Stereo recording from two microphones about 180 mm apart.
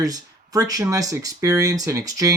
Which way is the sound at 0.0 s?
20° right (ahead or behind).